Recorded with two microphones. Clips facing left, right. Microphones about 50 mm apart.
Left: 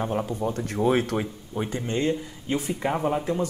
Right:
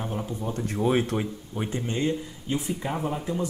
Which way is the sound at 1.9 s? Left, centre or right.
Left.